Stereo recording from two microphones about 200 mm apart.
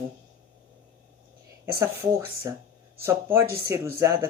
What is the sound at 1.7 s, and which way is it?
Speech, 15° right (ahead or behind).